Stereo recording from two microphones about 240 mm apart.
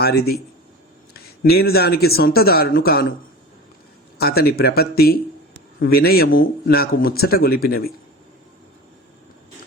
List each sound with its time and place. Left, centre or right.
0.0 s speech: left
4.2 s speech: left